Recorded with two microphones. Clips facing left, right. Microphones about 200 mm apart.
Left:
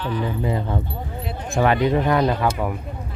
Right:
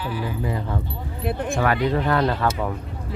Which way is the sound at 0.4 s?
25° left (ahead or behind).